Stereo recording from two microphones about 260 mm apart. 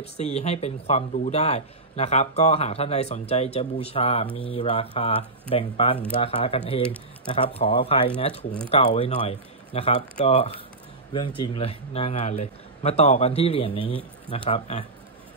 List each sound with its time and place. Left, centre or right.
0.0 s speech: left